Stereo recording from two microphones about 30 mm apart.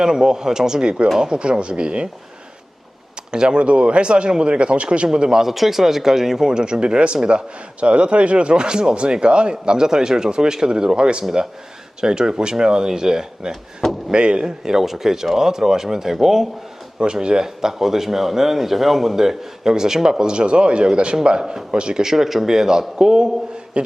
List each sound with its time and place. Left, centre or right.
0.0 s speech: right
3.3 s speech: right
3.6 s speech: right
5.5 s a man's voice: centre
6.5 s speech: right
14.1 s a man's voice: right; by 16.5 s centre
17.0 s a man's voice: right; by 19.1 s centre
19.1 s speech: centre
22.0 s a man's voice: centre
23.8 s speech: right